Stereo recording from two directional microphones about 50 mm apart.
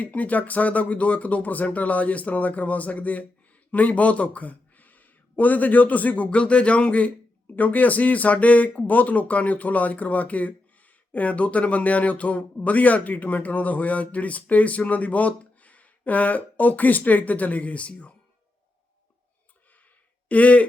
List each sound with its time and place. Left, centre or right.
0.0 s speech: left
20.2 s a man's voice: left